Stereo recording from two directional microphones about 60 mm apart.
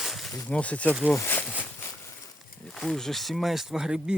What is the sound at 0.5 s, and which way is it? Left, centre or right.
Speech, left.